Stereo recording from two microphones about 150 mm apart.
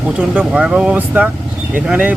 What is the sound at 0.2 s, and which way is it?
Speech, 5° right (ahead or behind).